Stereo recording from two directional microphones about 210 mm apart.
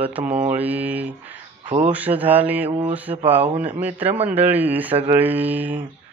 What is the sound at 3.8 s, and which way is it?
Speech, 10° right (ahead or behind).